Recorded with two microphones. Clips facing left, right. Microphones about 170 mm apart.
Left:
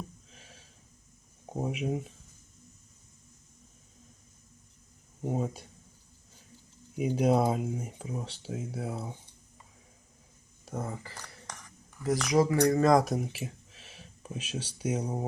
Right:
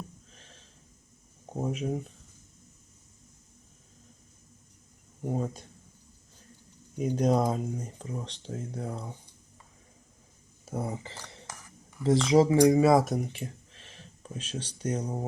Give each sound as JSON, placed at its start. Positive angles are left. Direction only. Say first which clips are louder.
{"t": 0.3, "sound": "a sound", "louder": "left 1 dB", "side_deg": 5}
{"t": 1.5, "sound": "speech", "louder": "right 1 dB", "side_deg": 10}
{"t": 5.2, "sound": "speech", "louder": "even", "side_deg": 5}
{"t": 6.9, "sound": "speech", "louder": "even", "side_deg": 5}
{"t": 10.7, "sound": "speech", "louder": "right 3 dB", "side_deg": -10}
{"t": 11.4, "sound": "cutlery", "louder": "even", "side_deg": -5}
{"t": 12.0, "sound": "speech", "louder": "right 4 dB", "side_deg": -25}
{"t": 12.5, "sound": "speech", "louder": "right 3 dB", "side_deg": -10}